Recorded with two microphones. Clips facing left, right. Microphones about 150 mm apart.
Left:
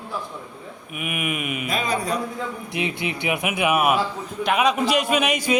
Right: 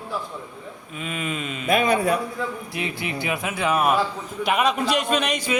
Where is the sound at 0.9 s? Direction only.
15° left (ahead or behind).